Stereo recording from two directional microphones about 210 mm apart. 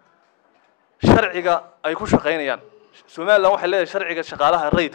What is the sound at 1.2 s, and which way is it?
Speech, 10° left (ahead or behind).